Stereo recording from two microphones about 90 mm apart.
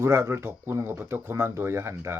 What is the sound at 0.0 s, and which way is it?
Speech, 30° right (ahead or behind).